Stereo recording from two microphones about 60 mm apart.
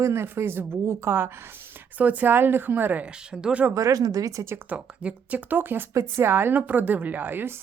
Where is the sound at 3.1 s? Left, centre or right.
Centre.